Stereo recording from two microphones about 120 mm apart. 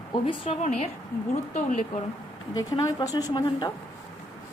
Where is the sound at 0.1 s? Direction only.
45° left (ahead or behind).